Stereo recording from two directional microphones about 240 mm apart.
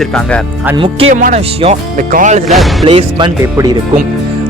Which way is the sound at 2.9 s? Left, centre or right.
Right.